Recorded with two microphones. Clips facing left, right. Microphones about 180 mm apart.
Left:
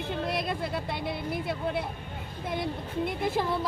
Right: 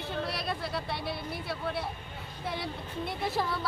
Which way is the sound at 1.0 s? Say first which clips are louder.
Left 5 dB; 20° left (ahead or behind).